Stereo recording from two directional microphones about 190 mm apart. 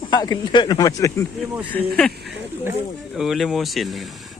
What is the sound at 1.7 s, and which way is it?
Speech, 5° left (ahead or behind).